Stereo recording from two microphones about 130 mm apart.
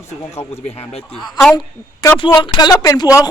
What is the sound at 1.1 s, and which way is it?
Speech, centre (ahead or behind).